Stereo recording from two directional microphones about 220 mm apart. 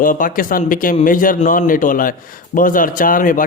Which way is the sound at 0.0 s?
40° left (ahead or behind).